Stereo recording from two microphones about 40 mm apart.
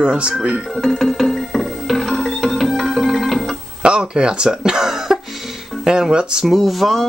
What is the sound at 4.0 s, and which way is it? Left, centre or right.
Speech, centre.